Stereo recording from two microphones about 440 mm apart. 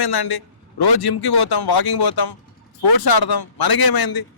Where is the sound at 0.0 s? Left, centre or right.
Left.